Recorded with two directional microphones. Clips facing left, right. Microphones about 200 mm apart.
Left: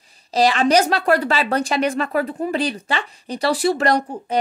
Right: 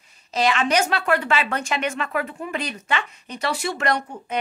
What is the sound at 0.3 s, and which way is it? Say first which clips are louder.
Speech: left 5 dB; 35° left (ahead or behind).